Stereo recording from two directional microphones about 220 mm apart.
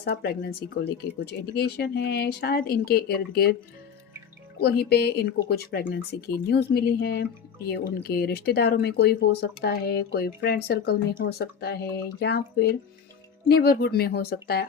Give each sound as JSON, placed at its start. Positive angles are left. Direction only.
{"t": 0.0, "sound": "speech", "side_deg": 45}
{"t": 4.6, "sound": "speech", "side_deg": 45}